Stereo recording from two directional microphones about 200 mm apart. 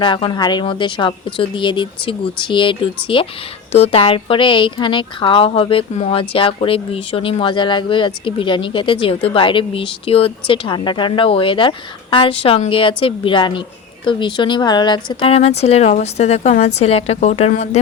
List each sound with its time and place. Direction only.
0.0 s a woman's voice: 25° left (ahead or behind)